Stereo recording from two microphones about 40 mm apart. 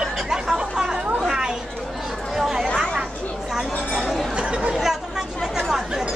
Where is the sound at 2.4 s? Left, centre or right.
Centre.